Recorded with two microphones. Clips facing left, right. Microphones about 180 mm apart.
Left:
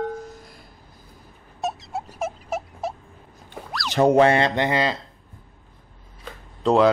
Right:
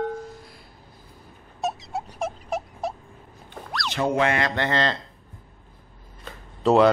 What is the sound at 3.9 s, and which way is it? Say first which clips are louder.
Speech: left 7 dB; 35° left (ahead or behind).